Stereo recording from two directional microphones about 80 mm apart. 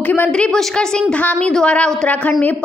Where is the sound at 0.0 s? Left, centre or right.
Left.